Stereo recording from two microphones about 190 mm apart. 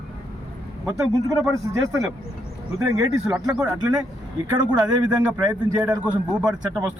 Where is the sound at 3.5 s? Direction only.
5° right (ahead or behind).